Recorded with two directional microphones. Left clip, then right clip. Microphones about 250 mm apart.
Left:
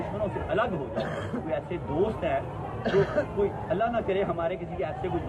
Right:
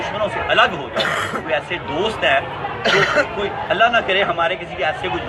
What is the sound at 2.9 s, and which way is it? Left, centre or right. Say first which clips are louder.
Speech: right 10 dB; right.